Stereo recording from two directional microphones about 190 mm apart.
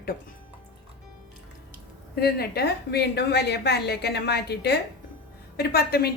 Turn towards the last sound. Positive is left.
turn(degrees=55)  # may be behind; listen again after turning